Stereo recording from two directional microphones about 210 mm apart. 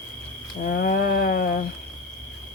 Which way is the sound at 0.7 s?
40° left (ahead or behind).